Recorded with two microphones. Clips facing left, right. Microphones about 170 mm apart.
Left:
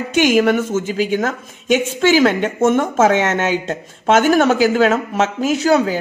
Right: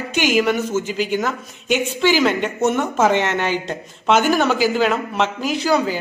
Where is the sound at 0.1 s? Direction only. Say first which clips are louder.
Left 4 dB; 50° left (ahead or behind).